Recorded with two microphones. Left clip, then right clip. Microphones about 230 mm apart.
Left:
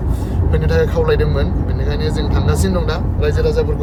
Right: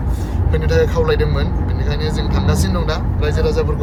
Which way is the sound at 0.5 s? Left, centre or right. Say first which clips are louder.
Even; centre.